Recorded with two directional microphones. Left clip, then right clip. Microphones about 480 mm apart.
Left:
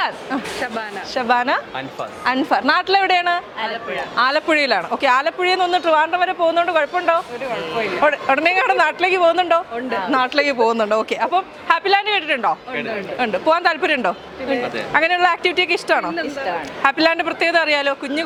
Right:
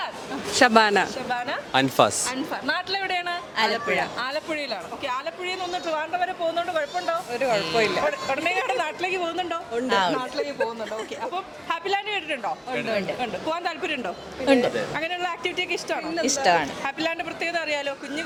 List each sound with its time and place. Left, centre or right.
1.1 s speech: left
4.2 s a woman's voice: left
9.7 s a woman's voice: right
10.2 s a woman's voice: left
16.1 s a woman's voice: right
16.8 s a woman's voice: left